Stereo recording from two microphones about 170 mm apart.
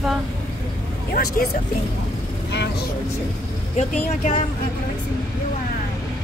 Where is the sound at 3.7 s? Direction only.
45° left (ahead or behind).